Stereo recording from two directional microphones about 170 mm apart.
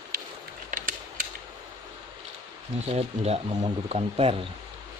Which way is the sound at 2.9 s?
35° right (ahead or behind).